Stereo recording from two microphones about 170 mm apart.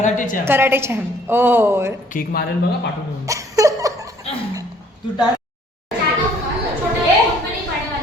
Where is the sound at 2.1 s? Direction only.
55° left (ahead or behind).